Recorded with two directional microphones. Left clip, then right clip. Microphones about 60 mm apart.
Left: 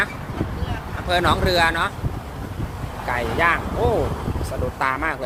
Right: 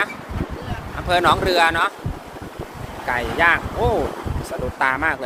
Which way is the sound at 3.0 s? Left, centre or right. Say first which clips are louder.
Right 2 dB; right.